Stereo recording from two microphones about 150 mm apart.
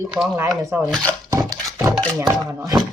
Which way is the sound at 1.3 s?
25° right (ahead or behind).